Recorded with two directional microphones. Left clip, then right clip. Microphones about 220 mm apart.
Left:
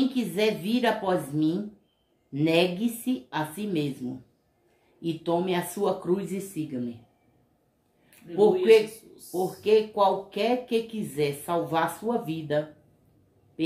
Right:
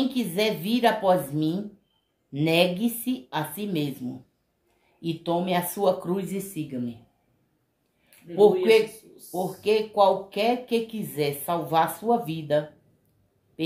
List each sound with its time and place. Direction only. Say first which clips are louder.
0.1 s speech: even; 15° right (ahead or behind)
5.0 s speech: even; 15° right (ahead or behind)
8.4 s speech: right 1 dB; 20° right (ahead or behind)